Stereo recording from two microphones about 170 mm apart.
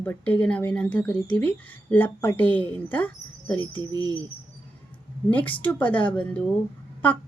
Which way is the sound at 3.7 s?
25° right (ahead or behind).